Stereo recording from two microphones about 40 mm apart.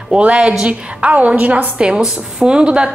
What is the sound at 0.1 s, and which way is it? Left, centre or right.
A woman's voice, right.